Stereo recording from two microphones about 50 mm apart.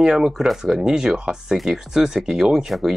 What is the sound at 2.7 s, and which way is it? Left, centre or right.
Speech, centre.